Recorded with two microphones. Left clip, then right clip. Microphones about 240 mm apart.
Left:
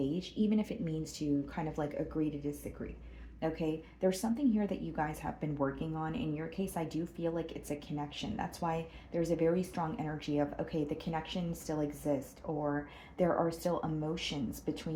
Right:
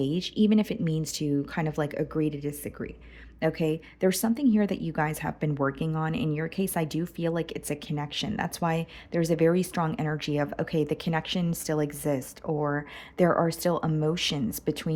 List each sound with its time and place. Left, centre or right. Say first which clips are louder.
0.0 s a woman's voice: right 8 dB; right